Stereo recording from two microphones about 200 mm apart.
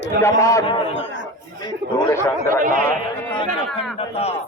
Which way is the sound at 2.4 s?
40° right (ahead or behind).